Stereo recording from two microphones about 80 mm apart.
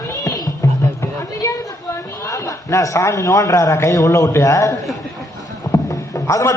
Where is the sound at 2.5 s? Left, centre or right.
Left.